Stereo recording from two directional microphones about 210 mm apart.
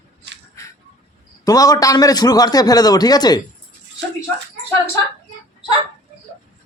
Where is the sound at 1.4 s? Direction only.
15° left (ahead or behind).